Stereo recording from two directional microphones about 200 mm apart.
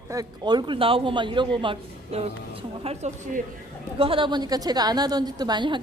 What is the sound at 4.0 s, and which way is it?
A man's voice, 25° right (ahead or behind).